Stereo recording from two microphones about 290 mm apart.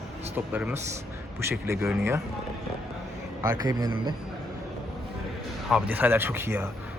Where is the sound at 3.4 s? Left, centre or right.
Centre.